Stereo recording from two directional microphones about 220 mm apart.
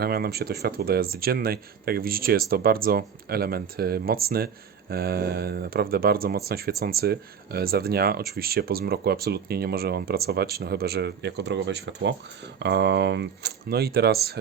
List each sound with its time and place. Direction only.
0.0 s speech: 45° right (ahead or behind)